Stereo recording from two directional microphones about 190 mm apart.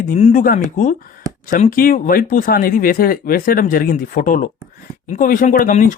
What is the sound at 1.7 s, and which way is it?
Speech, 50° left (ahead or behind).